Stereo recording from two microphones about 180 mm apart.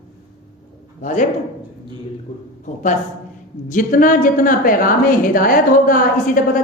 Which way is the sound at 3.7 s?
50° left (ahead or behind).